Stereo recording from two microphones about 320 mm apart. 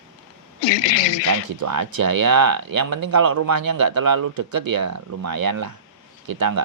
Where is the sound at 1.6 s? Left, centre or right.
Right.